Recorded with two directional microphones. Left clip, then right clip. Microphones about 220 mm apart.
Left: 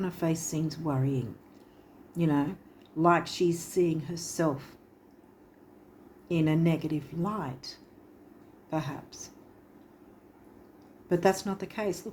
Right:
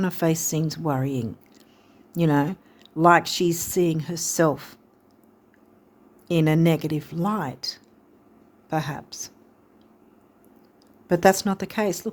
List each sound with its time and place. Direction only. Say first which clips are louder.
0.0 s speech: right 7 dB; 50° right (ahead or behind)
6.2 s speech: right 7 dB; 50° right (ahead or behind)
11.1 s speech: right 8 dB; 50° right (ahead or behind)